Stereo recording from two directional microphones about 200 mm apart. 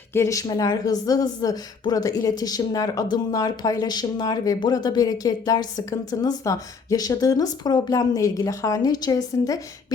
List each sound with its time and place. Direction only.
0.1 s a woman's voice: 15° left (ahead or behind)